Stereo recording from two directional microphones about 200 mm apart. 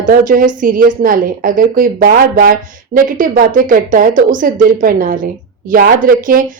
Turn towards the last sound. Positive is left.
turn(degrees=-45)  # may be behind; listen again after turning